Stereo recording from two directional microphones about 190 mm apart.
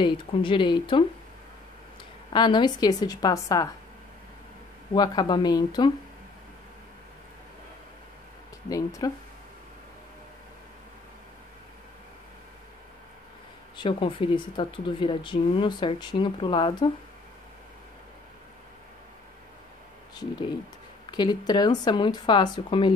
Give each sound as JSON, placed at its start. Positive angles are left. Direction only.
{"t": 0.0, "sound": "speech", "side_deg": 25}
{"t": 2.3, "sound": "speech", "side_deg": 25}
{"t": 4.9, "sound": "speech", "side_deg": 20}
{"t": 8.6, "sound": "speech", "side_deg": 20}
{"t": 13.7, "sound": "speech", "side_deg": 25}
{"t": 21.1, "sound": "speech", "side_deg": 20}